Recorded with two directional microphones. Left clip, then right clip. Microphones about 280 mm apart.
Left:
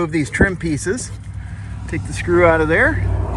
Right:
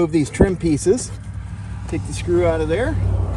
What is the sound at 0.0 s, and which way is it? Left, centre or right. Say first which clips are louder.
Speech: even; centre.